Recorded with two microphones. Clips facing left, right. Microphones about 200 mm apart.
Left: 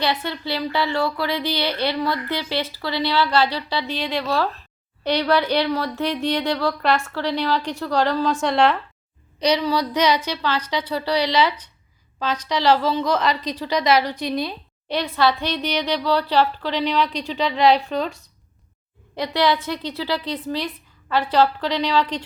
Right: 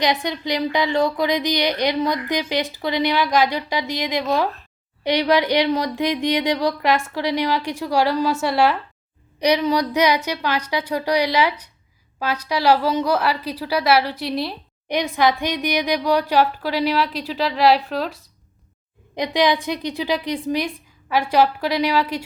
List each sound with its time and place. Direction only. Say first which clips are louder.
0.0 s speech: right 3 dB; 15° right (ahead or behind)
15.1 s a woman's voice: even; 15° right (ahead or behind)
19.1 s speech: right 1 dB; 15° right (ahead or behind)